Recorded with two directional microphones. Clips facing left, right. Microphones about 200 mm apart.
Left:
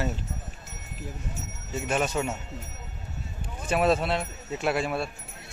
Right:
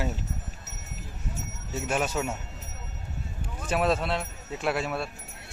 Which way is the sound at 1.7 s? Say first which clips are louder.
Left 1 dB; 5° right (ahead or behind).